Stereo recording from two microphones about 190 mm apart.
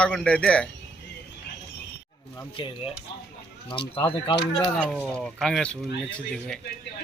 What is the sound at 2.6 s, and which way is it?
Speech, 30° left (ahead or behind).